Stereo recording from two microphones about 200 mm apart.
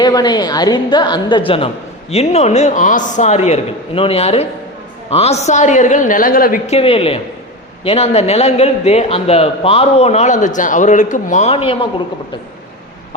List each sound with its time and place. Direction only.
0.0 s a woman's voice: 20° left (ahead or behind); by 6.7 s 45° left (ahead or behind)
6.7 s a woman's voice: 30° left (ahead or behind)